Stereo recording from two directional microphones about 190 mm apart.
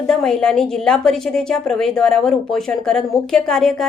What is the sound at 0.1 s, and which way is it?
A woman's voice, 5° left (ahead or behind).